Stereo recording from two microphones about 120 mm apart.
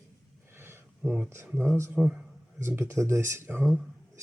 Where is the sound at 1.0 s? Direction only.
5° right (ahead or behind).